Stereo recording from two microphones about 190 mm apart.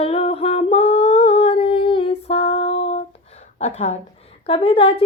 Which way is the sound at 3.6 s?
35° left (ahead or behind).